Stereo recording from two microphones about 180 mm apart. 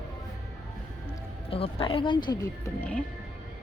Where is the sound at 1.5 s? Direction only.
30° left (ahead or behind).